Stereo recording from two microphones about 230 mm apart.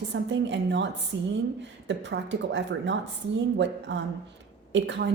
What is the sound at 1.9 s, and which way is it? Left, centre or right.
A woman's voice, right.